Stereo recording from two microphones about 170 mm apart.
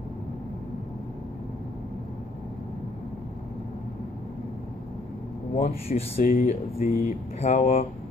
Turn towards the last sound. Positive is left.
turn(degrees=45)  # may be behind; listen again after turning